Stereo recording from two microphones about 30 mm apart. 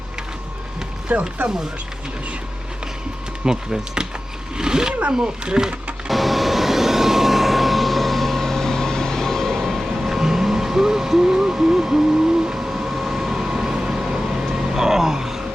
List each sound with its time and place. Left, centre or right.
1.1 s speech: right
3.4 s speech: right
6.1 s vehicle: centre
10.0 s owl: centre
12.5 s train: centre
12.9 s vehicle: centre
13.1 s vehicle: centre